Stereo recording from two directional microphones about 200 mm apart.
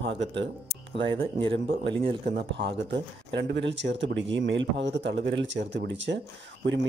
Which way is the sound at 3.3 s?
60° right (ahead or behind).